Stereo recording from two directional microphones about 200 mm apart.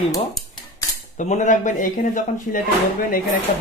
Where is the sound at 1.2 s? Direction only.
35° left (ahead or behind).